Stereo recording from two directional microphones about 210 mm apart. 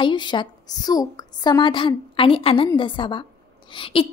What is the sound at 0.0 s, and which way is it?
A woman's voice, 20° left (ahead or behind).